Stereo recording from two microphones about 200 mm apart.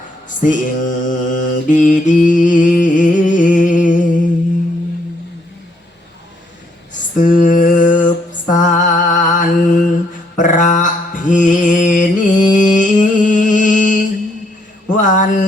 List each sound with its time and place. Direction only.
0.3 s a sound: 40° left (ahead or behind)
1.0 s mantra: 40° left (ahead or behind)
6.9 s music: 40° left (ahead or behind)
10.3 s mantra: 40° left (ahead or behind)